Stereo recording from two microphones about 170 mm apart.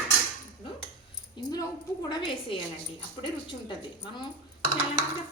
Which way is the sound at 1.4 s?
20° left (ahead or behind).